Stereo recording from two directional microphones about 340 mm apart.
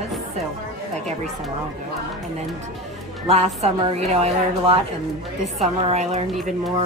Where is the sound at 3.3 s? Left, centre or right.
Centre.